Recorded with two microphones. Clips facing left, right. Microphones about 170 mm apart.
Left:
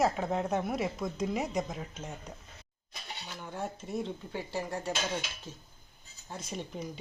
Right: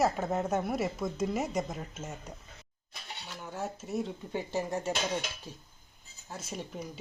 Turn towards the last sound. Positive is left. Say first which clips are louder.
# left 1 dB
turn(degrees=-5)  # may be behind; listen again after turning